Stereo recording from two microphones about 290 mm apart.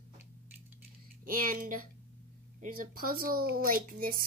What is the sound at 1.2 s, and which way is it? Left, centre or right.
Speech, right.